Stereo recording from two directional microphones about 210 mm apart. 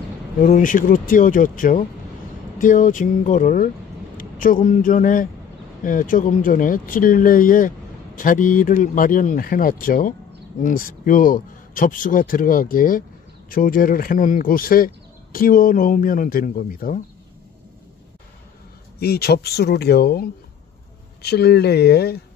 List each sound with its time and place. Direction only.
0.4 s a man's voice: 40° left (ahead or behind)
18.9 s speech: 50° left (ahead or behind)